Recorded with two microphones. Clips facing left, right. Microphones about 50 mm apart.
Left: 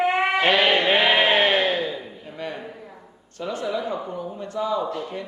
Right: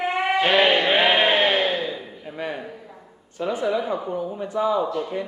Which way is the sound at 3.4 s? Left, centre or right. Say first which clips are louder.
Right 3 dB; centre.